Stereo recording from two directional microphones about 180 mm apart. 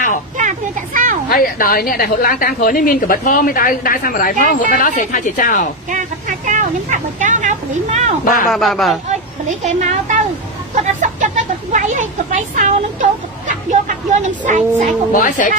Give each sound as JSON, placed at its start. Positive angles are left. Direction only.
{"t": 0.4, "sound": "speech", "side_deg": -45}
{"t": 1.3, "sound": "a woman's voice", "side_deg": 55}
{"t": 5.9, "sound": "speech", "side_deg": -45}
{"t": 8.5, "sound": "speech", "side_deg": 0}
{"t": 9.8, "sound": "speech", "side_deg": -40}
{"t": 10.7, "sound": "a sound", "side_deg": -40}
{"t": 13.5, "sound": "speech", "side_deg": -45}
{"t": 15.1, "sound": "a woman's voice", "side_deg": 45}